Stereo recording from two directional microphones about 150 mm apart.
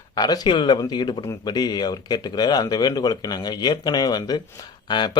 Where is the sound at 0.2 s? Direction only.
30° left (ahead or behind).